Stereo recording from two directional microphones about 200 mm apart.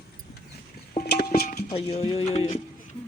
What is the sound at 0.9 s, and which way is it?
Music, 50° left (ahead or behind).